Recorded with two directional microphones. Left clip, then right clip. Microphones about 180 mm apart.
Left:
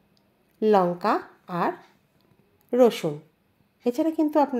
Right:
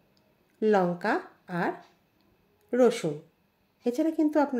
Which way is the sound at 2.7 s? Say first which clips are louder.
Left 4 dB; 15° left (ahead or behind).